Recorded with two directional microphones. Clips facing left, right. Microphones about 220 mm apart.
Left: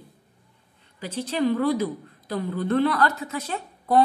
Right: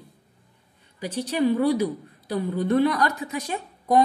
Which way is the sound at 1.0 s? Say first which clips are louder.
Right 1 dB; 15° right (ahead or behind).